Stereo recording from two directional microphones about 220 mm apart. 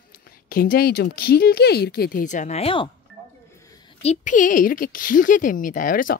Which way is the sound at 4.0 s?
30° left (ahead or behind).